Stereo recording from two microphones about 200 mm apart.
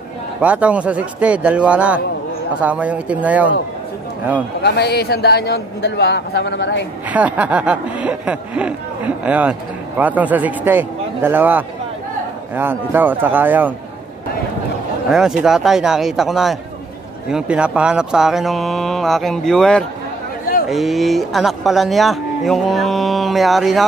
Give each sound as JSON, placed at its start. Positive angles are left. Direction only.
{"t": 0.4, "sound": "speech", "side_deg": -5}
{"t": 4.6, "sound": "a man's voice", "side_deg": 55}
{"t": 7.1, "sound": "speech", "side_deg": -5}
{"t": 15.0, "sound": "speech", "side_deg": -5}